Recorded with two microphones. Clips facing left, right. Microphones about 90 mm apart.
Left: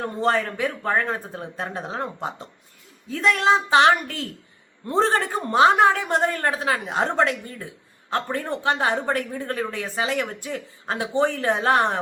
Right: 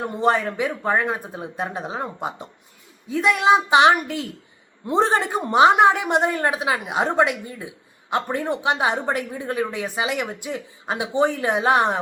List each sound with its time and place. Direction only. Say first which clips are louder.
0.0 s speech: right 2 dB; 15° right (ahead or behind)